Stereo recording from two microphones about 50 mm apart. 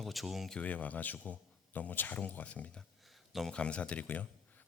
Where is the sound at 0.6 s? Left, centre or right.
Left.